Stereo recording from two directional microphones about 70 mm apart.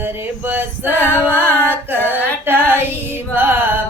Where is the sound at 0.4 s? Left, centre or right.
Right.